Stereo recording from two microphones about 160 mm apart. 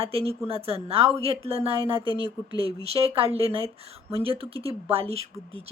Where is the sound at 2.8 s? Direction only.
35° right (ahead or behind).